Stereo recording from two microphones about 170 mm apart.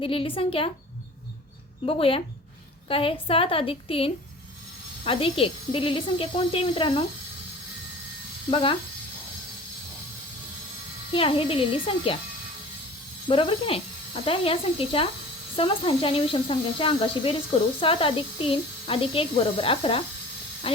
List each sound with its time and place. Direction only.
0.0 s speech: 30° left (ahead or behind)
1.8 s speech: 35° left (ahead or behind)
8.4 s speech: 30° left (ahead or behind)
11.1 s speech: 30° left (ahead or behind)
13.3 s speech: 30° left (ahead or behind)